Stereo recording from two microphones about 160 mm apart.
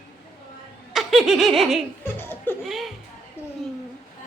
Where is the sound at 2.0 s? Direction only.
15° left (ahead or behind).